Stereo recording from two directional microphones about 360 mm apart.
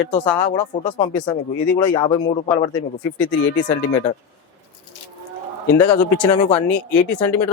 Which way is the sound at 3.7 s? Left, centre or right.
Centre.